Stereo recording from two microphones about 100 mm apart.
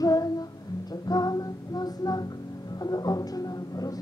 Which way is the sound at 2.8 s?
40° left (ahead or behind).